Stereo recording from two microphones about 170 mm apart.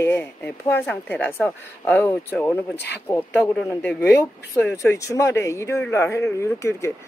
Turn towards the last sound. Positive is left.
turn(degrees=15)  # may be behind; listen again after turning